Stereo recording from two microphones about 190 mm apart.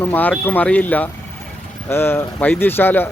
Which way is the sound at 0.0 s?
10° left (ahead or behind).